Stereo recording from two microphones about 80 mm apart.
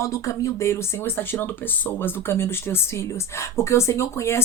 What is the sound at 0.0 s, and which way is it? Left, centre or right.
Speech, left.